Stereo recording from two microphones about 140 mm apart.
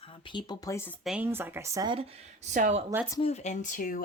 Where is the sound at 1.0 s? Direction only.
10° right (ahead or behind).